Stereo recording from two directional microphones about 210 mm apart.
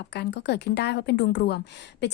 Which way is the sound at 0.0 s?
55° left (ahead or behind).